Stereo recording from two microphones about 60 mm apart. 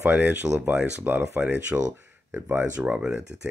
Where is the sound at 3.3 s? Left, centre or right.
Right.